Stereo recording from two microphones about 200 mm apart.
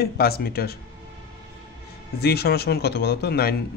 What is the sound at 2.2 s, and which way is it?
Speech, 50° left (ahead or behind).